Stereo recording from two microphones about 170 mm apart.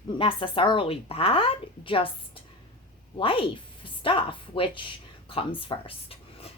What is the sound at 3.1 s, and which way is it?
A woman's voice, 30° left (ahead or behind).